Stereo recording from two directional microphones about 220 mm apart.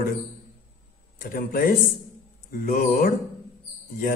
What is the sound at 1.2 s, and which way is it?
A man's voice, 40° left (ahead or behind).